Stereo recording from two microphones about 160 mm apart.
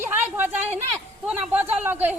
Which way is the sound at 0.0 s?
10° right (ahead or behind).